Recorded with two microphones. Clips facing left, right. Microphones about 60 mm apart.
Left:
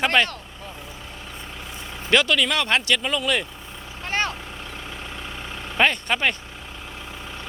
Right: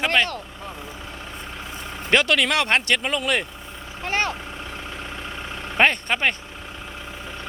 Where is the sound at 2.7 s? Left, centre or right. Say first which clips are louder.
Right 1 dB; right.